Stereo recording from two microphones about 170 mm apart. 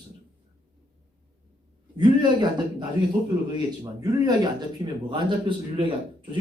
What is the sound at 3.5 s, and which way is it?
A man's voice, 25° right (ahead or behind).